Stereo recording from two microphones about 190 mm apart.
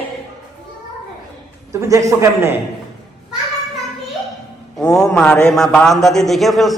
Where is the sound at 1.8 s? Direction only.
15° right (ahead or behind).